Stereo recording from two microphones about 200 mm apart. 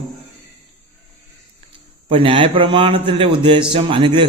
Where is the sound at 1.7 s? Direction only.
25° right (ahead or behind).